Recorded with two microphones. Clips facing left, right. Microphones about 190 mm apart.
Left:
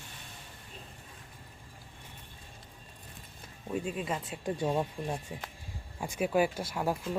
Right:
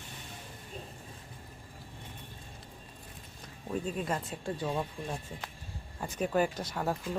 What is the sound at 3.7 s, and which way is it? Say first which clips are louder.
Speech: even; 5° left (ahead or behind).